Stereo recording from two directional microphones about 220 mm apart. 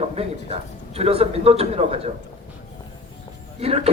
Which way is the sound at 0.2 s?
25° right (ahead or behind).